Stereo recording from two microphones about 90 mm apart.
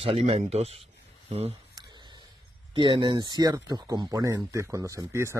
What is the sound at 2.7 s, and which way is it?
Speech, 60° right (ahead or behind).